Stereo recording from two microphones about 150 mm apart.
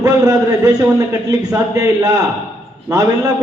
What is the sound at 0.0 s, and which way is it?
A man's voice, 25° right (ahead or behind).